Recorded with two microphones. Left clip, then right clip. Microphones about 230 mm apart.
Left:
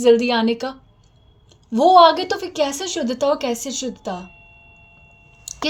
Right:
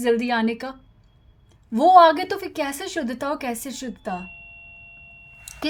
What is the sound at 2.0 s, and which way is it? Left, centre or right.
A woman's voice, right.